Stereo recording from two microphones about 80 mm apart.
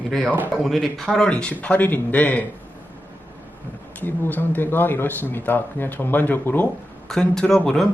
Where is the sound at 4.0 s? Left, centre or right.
Left.